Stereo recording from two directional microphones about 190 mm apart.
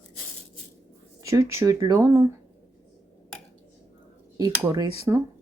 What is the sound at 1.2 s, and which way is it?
Speech, 15° right (ahead or behind).